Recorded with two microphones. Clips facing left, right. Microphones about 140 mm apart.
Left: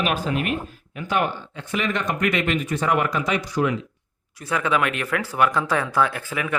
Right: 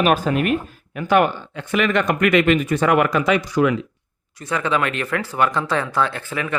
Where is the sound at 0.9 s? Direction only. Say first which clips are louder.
Right 7 dB; 60° right (ahead or behind); by 3.8 s 90° right.